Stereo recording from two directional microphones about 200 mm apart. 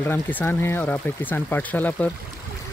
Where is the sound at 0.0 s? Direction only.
10° left (ahead or behind).